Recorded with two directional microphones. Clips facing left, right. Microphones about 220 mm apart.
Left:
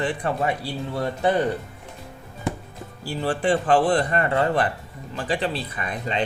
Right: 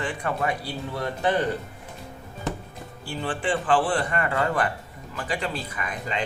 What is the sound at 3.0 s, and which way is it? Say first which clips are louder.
Speech: left 5 dB; 40° left (ahead or behind).